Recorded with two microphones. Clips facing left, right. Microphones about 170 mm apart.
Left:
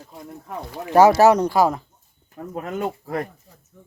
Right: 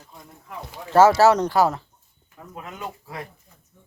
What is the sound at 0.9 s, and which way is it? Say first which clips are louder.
Speech: left 2 dB; 15° left (ahead or behind).